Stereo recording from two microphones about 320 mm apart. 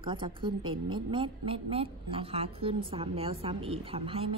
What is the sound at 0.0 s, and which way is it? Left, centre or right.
Speech, centre.